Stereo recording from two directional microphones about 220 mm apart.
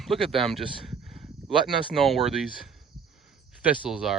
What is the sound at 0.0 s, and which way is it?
Speech, centre (ahead or behind).